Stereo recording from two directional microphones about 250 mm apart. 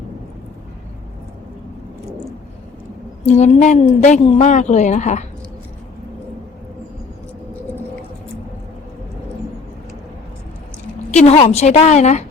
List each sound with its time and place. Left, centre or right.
3.2 s a woman's voice: left
11.1 s a woman's voice: left